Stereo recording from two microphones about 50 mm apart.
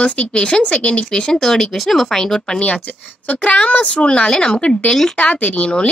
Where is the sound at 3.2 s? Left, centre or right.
Left.